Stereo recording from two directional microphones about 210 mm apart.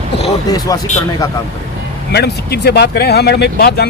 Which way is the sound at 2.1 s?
50° left (ahead or behind).